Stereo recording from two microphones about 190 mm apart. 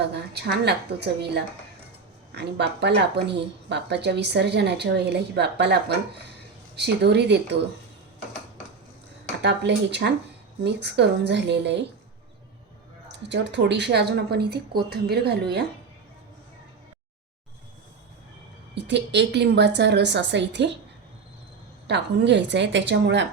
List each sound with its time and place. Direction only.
0.1 s speech: 60° right (ahead or behind)
9.4 s speech: 65° right (ahead or behind)
13.1 s speech: 70° right (ahead or behind)
18.7 s speech: 65° right (ahead or behind)
21.8 s a woman's voice: 65° right (ahead or behind)